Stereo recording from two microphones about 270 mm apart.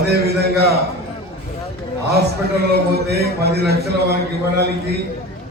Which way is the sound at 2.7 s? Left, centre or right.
Right.